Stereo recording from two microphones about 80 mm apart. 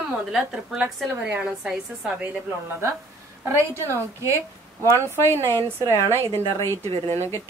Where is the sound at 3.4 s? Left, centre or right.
Right.